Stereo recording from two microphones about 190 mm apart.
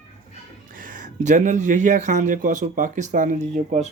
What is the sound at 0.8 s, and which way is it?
Speech, 45° right (ahead or behind).